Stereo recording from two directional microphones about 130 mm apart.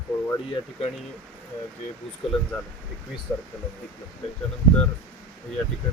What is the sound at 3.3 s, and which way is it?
Speech, 20° left (ahead or behind).